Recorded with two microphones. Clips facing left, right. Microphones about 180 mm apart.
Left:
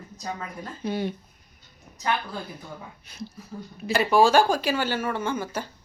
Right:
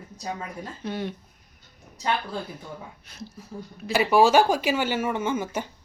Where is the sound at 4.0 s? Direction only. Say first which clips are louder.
Right 1 dB; 15° right (ahead or behind).